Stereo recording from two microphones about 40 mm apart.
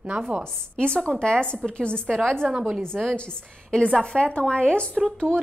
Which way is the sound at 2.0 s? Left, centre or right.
Centre.